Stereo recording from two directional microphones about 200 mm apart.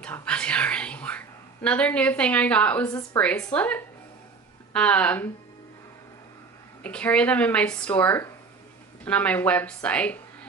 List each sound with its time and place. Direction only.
0.0 s speech: 5° left (ahead or behind)
2.9 s a woman's voice: 20° left (ahead or behind)
3.2 s speech: 5° left (ahead or behind)
6.8 s speech: 5° left (ahead or behind)